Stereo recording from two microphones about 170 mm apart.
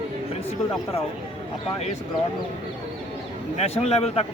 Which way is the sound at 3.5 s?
40° left (ahead or behind).